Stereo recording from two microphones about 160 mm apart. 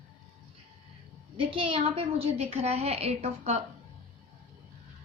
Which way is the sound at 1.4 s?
35° right (ahead or behind).